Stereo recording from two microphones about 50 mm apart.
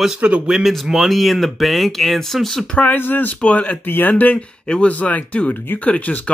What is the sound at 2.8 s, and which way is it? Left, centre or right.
Speech, left.